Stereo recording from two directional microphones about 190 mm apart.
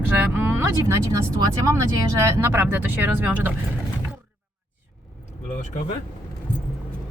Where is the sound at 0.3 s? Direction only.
10° right (ahead or behind).